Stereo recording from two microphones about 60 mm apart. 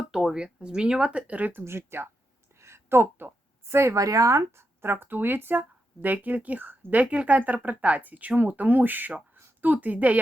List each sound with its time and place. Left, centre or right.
0.0 s speech: centre; by 1.6 s right
1.6 s speech: right
2.6 s a sound: right
3.9 s speech: right
4.8 s a woman's voice: right